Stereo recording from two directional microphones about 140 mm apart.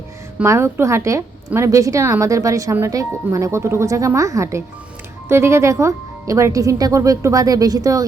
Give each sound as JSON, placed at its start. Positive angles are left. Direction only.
{"t": 0.4, "sound": "speech", "side_deg": -20}